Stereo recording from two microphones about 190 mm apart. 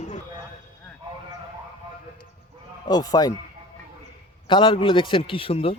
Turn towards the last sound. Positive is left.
turn(degrees=30)  # may be behind; listen again after turning